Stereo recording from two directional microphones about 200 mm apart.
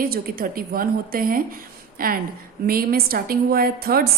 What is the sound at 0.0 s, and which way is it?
A woman's voice, 45° right (ahead or behind).